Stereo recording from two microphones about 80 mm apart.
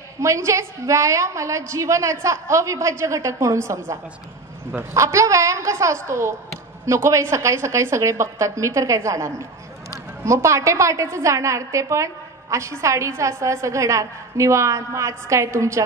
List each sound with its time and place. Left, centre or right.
0.2 s a woman's voice: right